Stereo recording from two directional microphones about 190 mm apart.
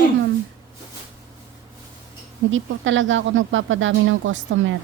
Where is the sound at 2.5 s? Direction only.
85° right.